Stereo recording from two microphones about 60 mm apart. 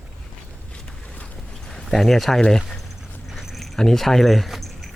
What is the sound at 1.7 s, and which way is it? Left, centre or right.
Speech, centre.